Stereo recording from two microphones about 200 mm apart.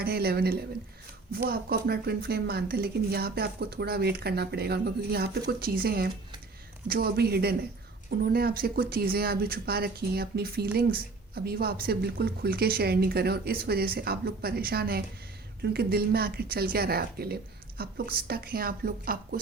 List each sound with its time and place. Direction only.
0.0 s speech: 50° right (ahead or behind)